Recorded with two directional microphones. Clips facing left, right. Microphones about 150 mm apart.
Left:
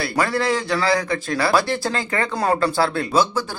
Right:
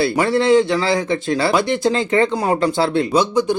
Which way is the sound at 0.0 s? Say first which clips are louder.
Right 5 dB; 25° right (ahead or behind).